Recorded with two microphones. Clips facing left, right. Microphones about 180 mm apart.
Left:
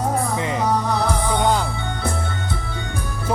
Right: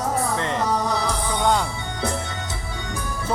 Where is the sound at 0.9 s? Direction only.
60° left (ahead or behind).